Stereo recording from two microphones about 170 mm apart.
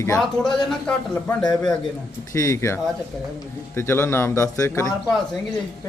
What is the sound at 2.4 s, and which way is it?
A man's voice, 15° left (ahead or behind).